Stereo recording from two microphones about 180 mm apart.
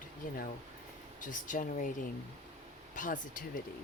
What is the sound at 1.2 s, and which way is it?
Speech, 45° left (ahead or behind).